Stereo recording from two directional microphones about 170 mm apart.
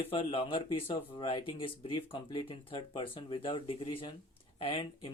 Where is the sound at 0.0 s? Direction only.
35° left (ahead or behind).